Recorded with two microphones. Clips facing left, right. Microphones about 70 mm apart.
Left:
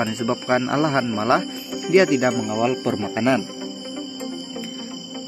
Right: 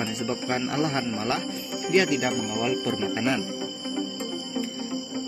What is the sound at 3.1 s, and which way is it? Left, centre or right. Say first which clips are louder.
Speech: left 8 dB; left.